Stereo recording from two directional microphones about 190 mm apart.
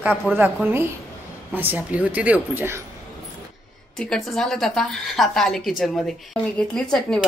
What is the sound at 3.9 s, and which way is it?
A woman's voice, 5° left (ahead or behind).